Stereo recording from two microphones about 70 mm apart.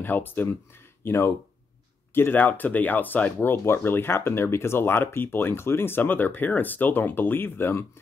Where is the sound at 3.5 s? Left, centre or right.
Left.